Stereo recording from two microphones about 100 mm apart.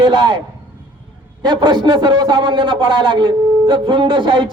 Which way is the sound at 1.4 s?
50° right (ahead or behind).